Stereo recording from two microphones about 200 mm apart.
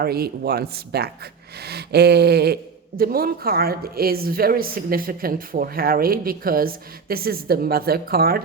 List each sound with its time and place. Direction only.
0.0 s a woman's voice: 50° right (ahead or behind)